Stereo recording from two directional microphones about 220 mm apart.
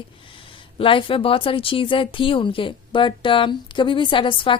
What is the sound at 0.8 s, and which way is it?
Speech, 25° left (ahead or behind).